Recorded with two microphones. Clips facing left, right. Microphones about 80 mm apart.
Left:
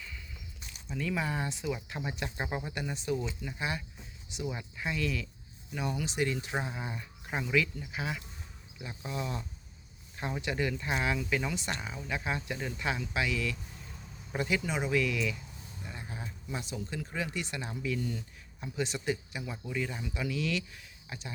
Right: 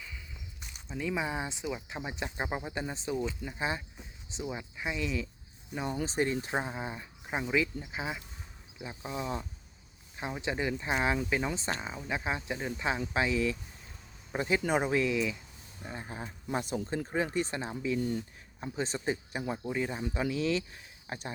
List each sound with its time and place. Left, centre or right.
0.9 s speech: centre
6.6 s speech: right
14.6 s speech: right
14.8 s speech: right
16.5 s speech: right
20.1 s speech: right